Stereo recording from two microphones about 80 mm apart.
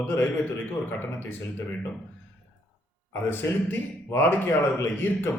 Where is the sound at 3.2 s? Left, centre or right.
Left.